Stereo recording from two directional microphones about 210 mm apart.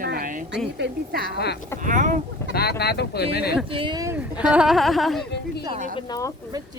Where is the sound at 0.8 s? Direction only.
50° right (ahead or behind).